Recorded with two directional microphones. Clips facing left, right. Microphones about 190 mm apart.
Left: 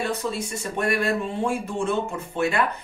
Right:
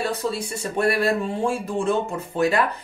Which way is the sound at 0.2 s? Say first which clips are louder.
Right 2 dB; 35° right (ahead or behind).